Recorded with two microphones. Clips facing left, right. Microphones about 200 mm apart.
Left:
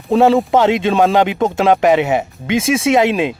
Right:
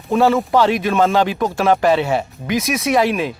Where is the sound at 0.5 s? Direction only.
20° left (ahead or behind).